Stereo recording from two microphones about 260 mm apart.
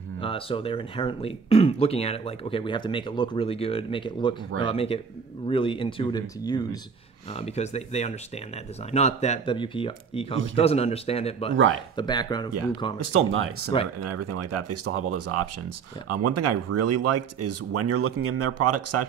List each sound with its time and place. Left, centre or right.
0.2 s speech: left
13.0 s speech: right
14.0 s speech: right